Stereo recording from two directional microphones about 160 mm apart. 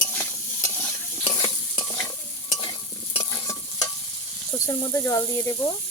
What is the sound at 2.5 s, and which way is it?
Stir, 35° left (ahead or behind).